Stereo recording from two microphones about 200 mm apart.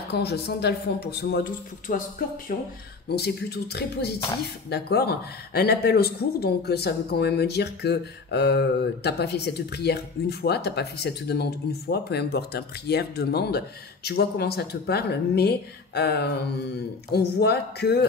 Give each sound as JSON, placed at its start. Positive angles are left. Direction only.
{"t": 0.1, "sound": "speech", "side_deg": 55}